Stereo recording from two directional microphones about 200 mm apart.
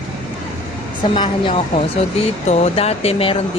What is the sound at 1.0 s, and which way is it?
Speech, 25° left (ahead or behind).